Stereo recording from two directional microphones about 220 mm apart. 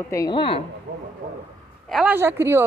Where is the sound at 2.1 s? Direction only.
10° right (ahead or behind).